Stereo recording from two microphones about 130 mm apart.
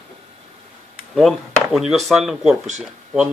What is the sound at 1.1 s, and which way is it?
Speech, centre (ahead or behind).